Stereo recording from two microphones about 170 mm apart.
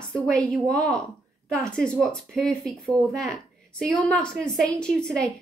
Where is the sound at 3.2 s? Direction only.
Centre (ahead or behind).